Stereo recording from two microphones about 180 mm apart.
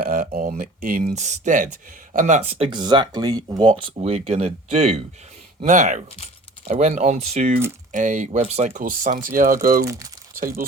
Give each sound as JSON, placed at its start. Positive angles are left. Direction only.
{"t": 0.0, "sound": "speech", "side_deg": -50}